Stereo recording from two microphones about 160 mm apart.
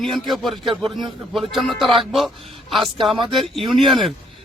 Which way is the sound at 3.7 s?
Centre (ahead or behind).